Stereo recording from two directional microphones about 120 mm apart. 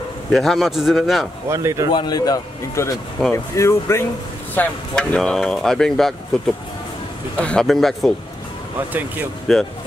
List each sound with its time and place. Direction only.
0.3 s speech: centre (ahead or behind)
1.5 s speech: 25° right (ahead or behind)
1.9 s a man's voice: 35° left (ahead or behind)
3.2 s speech: centre (ahead or behind)
3.5 s speech: 25° left (ahead or behind)
4.6 s speech: 5° left (ahead or behind)
9.5 s speech: centre (ahead or behind)